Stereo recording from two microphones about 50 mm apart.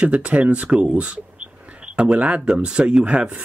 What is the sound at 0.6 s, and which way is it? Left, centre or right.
Speech, centre.